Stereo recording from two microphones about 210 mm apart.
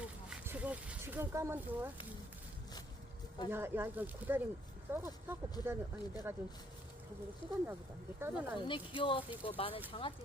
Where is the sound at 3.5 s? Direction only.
10° right (ahead or behind).